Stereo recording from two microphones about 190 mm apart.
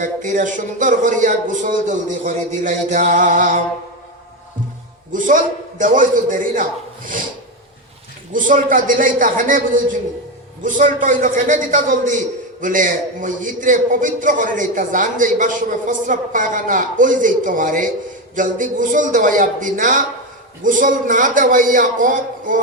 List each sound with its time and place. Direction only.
0.0 s a man's voice: 40° right (ahead or behind)
5.1 s a man's voice: 45° right (ahead or behind)
8.3 s a man's voice: 45° right (ahead or behind)